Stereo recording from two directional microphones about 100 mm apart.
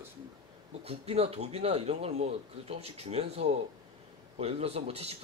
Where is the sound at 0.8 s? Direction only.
75° right (ahead or behind).